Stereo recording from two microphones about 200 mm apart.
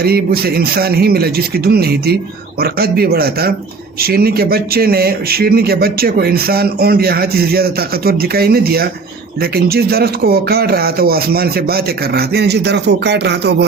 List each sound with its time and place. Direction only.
0.0 s speech: 50° right (ahead or behind)